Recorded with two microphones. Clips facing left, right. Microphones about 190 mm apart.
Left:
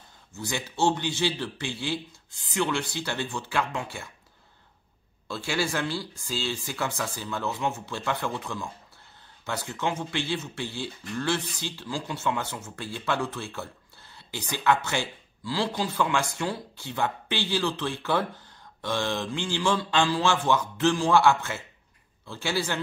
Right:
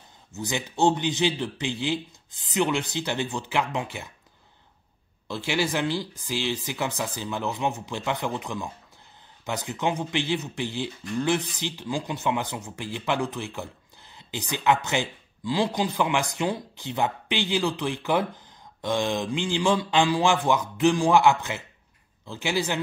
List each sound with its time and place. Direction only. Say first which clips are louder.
0.3 s speech: right 3 dB; 20° right (ahead or behind)
5.3 s speech: right 2 dB; 20° right (ahead or behind)